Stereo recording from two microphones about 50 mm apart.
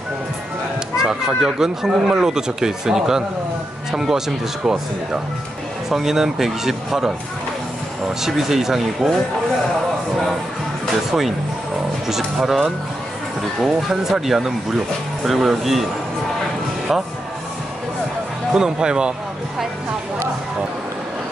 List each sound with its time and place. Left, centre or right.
0.9 s speech: centre
5.9 s speech: centre
8.2 s speech: centre
11.1 s speech: centre
18.5 s speech: centre